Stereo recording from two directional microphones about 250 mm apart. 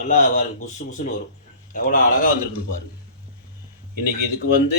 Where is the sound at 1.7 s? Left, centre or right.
Left.